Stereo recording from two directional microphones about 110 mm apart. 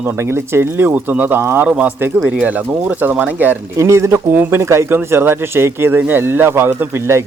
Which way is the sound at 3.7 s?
25° right (ahead or behind).